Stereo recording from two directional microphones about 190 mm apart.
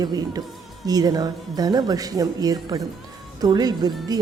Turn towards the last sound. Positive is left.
turn(degrees=-20)  # may be behind; listen again after turning